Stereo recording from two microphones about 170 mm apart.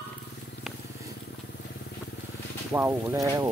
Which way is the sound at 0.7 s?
Centre (ahead or behind).